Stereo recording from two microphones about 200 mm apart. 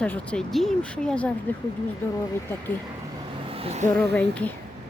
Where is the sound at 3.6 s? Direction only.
30° right (ahead or behind).